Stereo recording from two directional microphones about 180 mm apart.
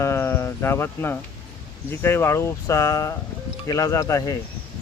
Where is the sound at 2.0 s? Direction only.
15° left (ahead or behind).